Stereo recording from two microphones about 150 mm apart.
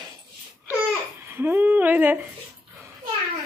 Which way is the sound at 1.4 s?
15° right (ahead or behind).